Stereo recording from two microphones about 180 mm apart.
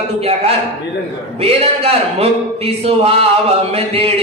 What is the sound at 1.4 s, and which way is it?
A man's voice, 35° right (ahead or behind).